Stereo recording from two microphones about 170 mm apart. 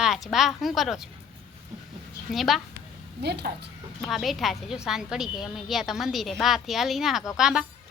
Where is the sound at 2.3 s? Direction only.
Centre (ahead or behind).